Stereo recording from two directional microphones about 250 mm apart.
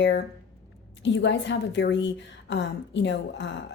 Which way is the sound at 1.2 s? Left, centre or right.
Left.